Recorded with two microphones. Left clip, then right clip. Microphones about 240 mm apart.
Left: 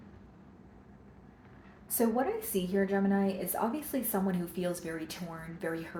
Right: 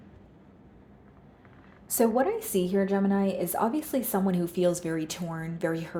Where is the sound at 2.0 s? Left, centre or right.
Right.